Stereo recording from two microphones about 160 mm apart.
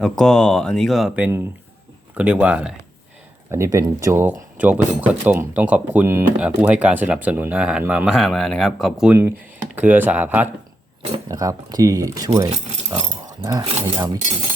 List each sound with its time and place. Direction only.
0.0 s speech: 5° left (ahead or behind)
3.5 s speech: 20° right (ahead or behind)
11.3 s speech: 20° right (ahead or behind)